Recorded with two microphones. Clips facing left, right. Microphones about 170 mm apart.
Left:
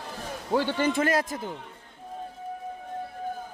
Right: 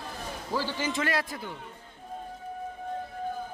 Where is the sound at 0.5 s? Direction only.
60° left (ahead or behind); by 1.5 s 45° left (ahead or behind).